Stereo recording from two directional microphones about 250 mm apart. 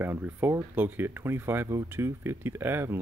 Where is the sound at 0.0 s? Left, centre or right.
Centre.